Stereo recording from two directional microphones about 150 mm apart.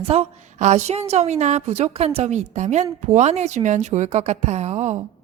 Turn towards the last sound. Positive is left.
turn(degrees=-50)  # may be behind; listen again after turning